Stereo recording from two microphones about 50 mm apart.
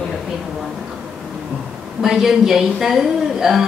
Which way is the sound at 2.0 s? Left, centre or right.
Centre.